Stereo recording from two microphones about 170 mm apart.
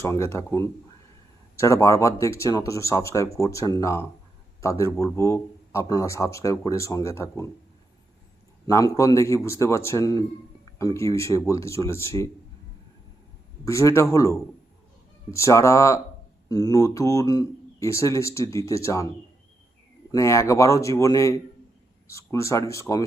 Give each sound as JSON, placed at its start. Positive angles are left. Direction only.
{"t": 0.0, "sound": "speech", "side_deg": 15}
{"t": 8.6, "sound": "speech", "side_deg": 20}
{"t": 13.7, "sound": "speech", "side_deg": 15}
{"t": 20.1, "sound": "speech", "side_deg": 20}